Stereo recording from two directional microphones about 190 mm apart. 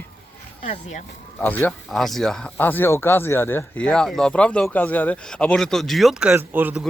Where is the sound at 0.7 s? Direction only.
40° left (ahead or behind).